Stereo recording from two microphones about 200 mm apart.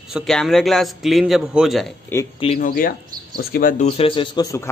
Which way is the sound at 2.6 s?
45° left (ahead or behind).